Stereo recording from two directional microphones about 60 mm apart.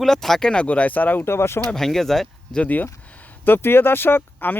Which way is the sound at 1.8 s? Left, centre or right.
Centre.